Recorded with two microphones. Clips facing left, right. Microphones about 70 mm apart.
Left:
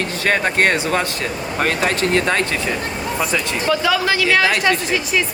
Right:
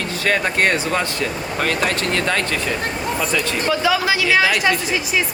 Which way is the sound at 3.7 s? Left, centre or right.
Centre.